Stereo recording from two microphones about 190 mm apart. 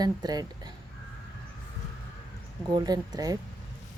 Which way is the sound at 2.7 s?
20° right (ahead or behind).